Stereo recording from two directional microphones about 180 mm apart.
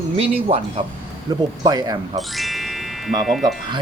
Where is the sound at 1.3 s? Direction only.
20° right (ahead or behind).